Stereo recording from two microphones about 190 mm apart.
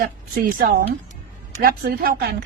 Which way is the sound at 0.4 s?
50° right (ahead or behind).